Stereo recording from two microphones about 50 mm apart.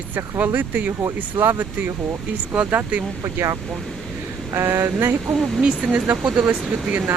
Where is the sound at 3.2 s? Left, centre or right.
Right.